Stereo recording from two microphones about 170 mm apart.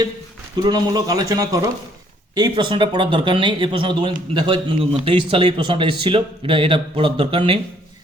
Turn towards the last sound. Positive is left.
turn(degrees=-30)  # may be behind; listen again after turning